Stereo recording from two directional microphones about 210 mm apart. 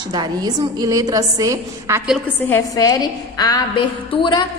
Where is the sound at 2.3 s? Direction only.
10° left (ahead or behind).